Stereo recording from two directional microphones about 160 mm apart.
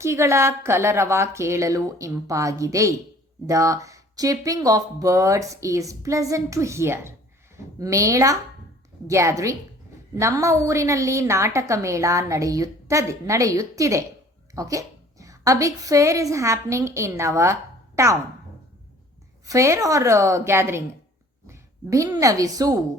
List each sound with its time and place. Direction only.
0.0 s a woman's voice: 15° right (ahead or behind)
19.5 s a woman's voice: 20° right (ahead or behind)